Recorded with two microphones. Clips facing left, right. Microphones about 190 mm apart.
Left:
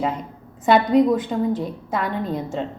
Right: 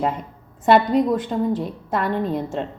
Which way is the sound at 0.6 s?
Centre (ahead or behind).